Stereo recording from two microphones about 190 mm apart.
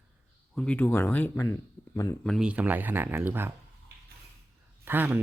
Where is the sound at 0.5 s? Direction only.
5° left (ahead or behind).